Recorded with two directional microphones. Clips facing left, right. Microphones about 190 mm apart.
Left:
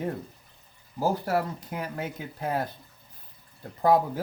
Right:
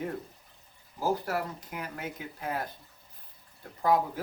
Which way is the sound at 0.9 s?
30° left (ahead or behind).